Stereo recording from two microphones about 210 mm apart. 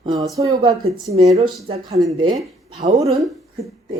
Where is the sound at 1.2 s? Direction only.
30° right (ahead or behind).